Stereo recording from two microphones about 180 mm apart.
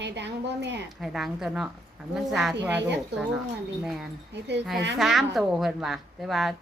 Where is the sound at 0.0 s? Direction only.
75° right (ahead or behind).